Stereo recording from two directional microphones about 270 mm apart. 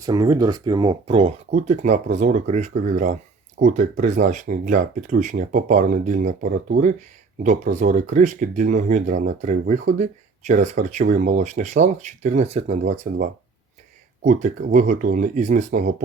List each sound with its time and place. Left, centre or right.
0.0 s speech: centre